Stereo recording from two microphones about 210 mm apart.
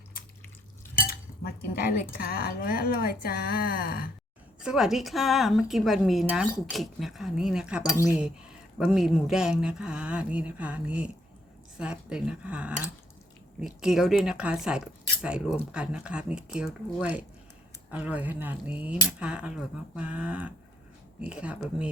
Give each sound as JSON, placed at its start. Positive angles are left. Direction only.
{"t": 1.8, "sound": "speech", "side_deg": 45}
{"t": 4.6, "sound": "a woman's voice", "side_deg": 0}